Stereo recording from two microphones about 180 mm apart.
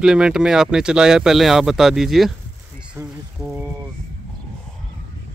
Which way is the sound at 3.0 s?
15° right (ahead or behind).